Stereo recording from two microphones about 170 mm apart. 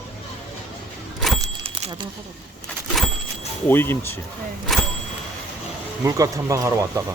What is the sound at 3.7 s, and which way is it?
Speech, 10° left (ahead or behind).